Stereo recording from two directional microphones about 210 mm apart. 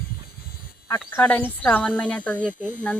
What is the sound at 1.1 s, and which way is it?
A woman's voice, 10° left (ahead or behind).